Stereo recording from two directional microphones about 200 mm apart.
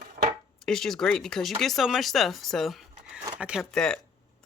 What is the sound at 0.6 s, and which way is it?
Speech, centre (ahead or behind).